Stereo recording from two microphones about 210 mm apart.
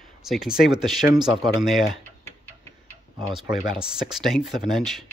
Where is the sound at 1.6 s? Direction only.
Centre (ahead or behind).